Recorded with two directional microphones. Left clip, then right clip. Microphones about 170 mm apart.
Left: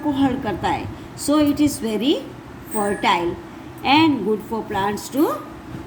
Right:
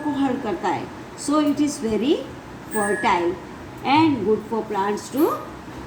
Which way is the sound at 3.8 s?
50° left (ahead or behind).